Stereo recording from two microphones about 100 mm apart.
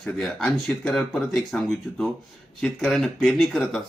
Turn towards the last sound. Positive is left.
turn(degrees=0)  # may be behind; listen again after turning